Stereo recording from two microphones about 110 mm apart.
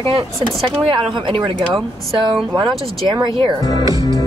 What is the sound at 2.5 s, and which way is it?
Speech, 35° right (ahead or behind).